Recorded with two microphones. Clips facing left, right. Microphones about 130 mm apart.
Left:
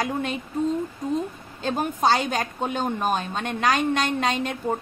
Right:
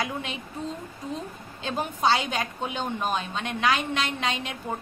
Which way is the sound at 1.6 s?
45° left (ahead or behind).